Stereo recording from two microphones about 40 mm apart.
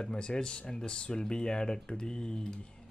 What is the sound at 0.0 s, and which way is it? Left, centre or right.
Speech, left.